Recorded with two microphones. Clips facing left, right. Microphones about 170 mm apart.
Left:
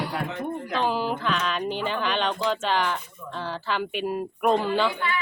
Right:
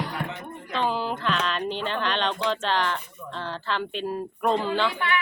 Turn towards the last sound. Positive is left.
turn(degrees=5)  # may be behind; listen again after turning